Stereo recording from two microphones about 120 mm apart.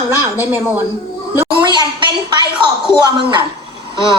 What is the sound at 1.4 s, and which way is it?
A woman's voice, 40° right (ahead or behind).